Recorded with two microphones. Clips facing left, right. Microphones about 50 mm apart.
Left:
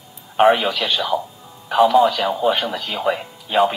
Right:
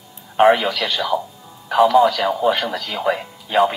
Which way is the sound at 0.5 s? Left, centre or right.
Centre.